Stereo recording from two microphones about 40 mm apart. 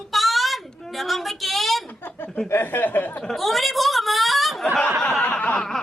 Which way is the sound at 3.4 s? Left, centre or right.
Centre.